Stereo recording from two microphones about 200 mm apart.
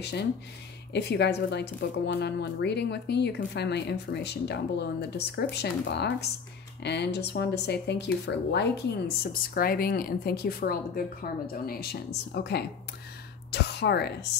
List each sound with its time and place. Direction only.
0.0 s speech: 55° left (ahead or behind)